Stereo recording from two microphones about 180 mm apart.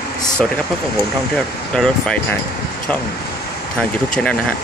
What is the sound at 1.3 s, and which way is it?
Speech, 5° left (ahead or behind).